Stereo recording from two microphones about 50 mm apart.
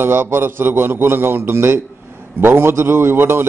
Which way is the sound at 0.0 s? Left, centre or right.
Right.